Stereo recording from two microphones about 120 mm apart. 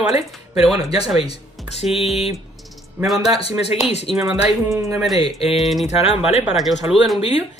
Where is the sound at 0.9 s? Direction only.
55° left (ahead or behind).